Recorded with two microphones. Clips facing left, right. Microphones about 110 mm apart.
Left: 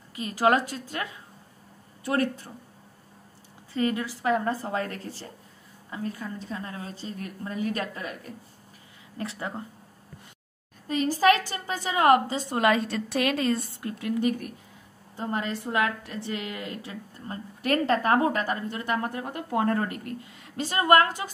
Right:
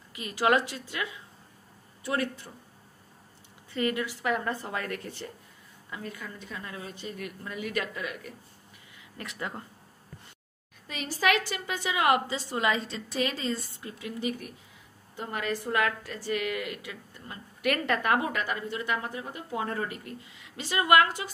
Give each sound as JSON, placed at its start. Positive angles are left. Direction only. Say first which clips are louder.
{"t": 0.1, "sound": "a woman's voice", "louder": "left 2 dB", "side_deg": 35}
{"t": 3.7, "sound": "a woman's voice", "louder": "left 2 dB", "side_deg": 30}
{"t": 10.9, "sound": "a woman's voice", "louder": "left 6 dB", "side_deg": 40}
{"t": 15.1, "sound": "a woman's voice", "louder": "left 2 dB", "side_deg": 30}